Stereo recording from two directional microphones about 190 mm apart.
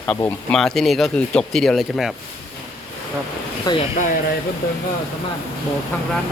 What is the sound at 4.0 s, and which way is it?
Speech, 45° left (ahead or behind).